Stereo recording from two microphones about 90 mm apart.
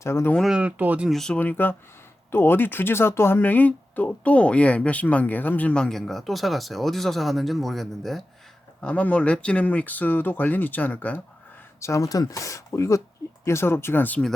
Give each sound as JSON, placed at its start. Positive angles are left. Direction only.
{"t": 0.0, "sound": "speech", "side_deg": 30}
{"t": 0.4, "sound": "speech", "side_deg": -10}
{"t": 1.0, "sound": "speech", "side_deg": 5}
{"t": 1.4, "sound": "speech", "side_deg": 20}
{"t": 8.8, "sound": "speech", "side_deg": 15}
{"t": 11.8, "sound": "speech", "side_deg": 35}